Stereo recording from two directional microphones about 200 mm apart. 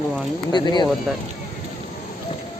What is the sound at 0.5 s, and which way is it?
Speech, 20° left (ahead or behind).